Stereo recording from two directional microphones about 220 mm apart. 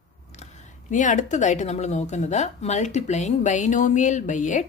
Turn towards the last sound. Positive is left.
turn(degrees=35)  # may be behind; listen again after turning